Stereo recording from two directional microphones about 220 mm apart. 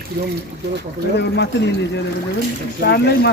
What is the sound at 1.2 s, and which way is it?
Speech, 50° left (ahead or behind).